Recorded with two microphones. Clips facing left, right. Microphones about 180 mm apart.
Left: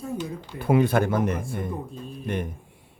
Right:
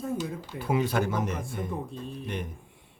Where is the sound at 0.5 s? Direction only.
55° left (ahead or behind).